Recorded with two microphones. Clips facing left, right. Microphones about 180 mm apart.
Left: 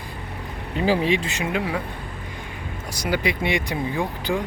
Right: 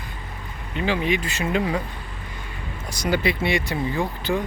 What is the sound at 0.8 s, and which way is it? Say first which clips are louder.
Speech: left 3 dB; 35° left (ahead or behind).